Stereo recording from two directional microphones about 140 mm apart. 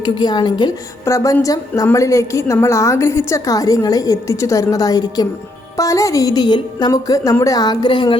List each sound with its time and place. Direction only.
0.0 s a woman's voice: 30° left (ahead or behind)